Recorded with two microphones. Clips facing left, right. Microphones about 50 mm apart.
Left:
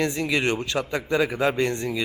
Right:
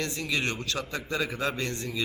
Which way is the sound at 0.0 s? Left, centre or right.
Left.